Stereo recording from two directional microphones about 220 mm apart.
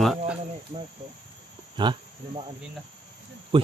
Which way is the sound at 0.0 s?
Centre (ahead or behind).